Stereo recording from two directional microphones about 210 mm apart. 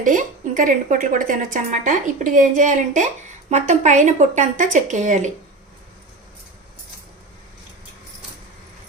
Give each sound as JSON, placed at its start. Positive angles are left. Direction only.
{"t": 0.0, "sound": "a woman's voice", "side_deg": -40}